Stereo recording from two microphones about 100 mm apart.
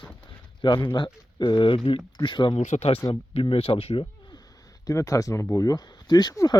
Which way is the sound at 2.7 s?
90° left.